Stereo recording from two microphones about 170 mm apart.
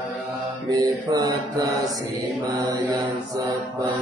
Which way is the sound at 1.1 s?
20° right (ahead or behind).